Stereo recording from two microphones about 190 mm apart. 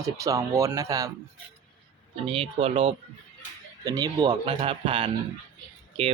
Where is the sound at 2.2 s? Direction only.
30° right (ahead or behind).